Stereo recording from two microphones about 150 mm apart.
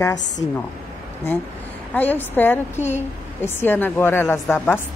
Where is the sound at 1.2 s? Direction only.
15° left (ahead or behind).